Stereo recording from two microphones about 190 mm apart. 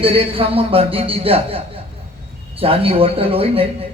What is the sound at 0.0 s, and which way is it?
Speech, 30° right (ahead or behind).